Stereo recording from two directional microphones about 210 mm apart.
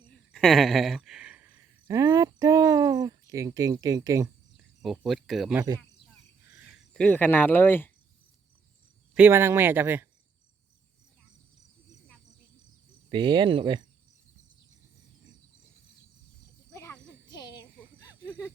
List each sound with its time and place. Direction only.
0.3 s speech: centre (ahead or behind); by 4.3 s 15° right (ahead or behind)
4.5 s speech: centre (ahead or behind)
9.1 s speech: 10° right (ahead or behind)
11.9 s cricket: 5° left (ahead or behind)
13.1 s speech: 20° right (ahead or behind)
16.7 s a sound: 15° left (ahead or behind)